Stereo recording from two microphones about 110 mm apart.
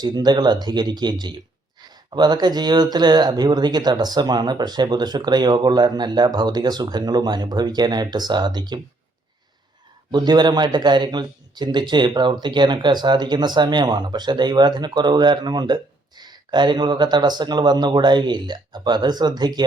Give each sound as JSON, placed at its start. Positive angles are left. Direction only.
{"t": 0.0, "sound": "a man's voice", "side_deg": -40}
{"t": 10.1, "sound": "a man's voice", "side_deg": -40}